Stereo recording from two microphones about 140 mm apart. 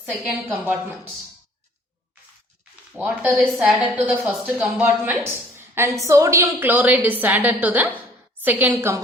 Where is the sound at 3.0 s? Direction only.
10° right (ahead or behind).